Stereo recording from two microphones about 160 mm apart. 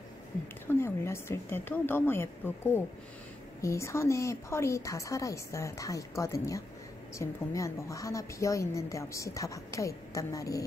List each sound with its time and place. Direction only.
0.7 s a woman's voice: 15° left (ahead or behind)